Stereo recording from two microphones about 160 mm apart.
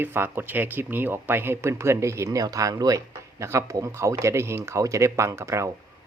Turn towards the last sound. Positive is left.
turn(degrees=-15)  # may be behind; listen again after turning